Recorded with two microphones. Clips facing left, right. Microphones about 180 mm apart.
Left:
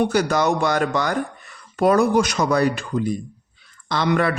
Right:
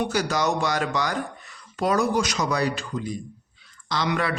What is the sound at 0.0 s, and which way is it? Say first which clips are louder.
A man's voice: left 5 dB; 55° left (ahead or behind).